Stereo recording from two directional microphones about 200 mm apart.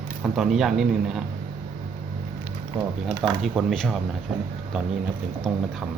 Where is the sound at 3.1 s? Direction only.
5° right (ahead or behind).